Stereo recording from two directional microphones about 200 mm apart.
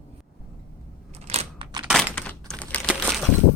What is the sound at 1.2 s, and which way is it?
Computer keyboard, 30° right (ahead or behind).